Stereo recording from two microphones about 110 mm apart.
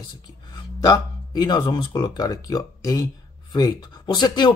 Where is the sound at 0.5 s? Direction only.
35° left (ahead or behind).